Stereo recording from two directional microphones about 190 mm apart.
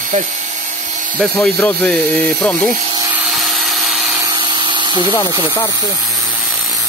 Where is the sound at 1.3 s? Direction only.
Centre (ahead or behind).